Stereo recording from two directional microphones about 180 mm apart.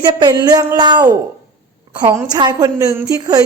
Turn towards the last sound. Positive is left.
turn(degrees=-20)  # may be behind; listen again after turning